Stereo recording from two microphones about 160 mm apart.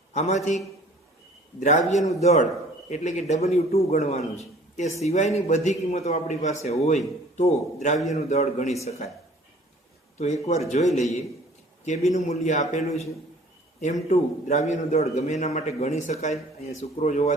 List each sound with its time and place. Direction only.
0.1 s a man's voice: 45° left (ahead or behind)
1.5 s a man's voice: 50° left (ahead or behind)
10.2 s a man's voice: 45° left (ahead or behind)